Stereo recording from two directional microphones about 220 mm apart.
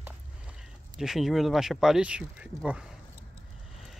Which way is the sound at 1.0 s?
Centre (ahead or behind).